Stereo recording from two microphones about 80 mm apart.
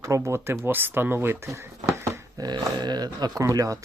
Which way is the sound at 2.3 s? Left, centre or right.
Right.